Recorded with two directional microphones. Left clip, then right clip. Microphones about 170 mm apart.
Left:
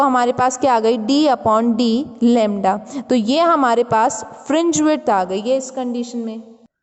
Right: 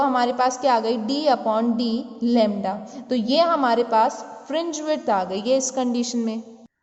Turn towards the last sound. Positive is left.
turn(degrees=0)  # may be behind; listen again after turning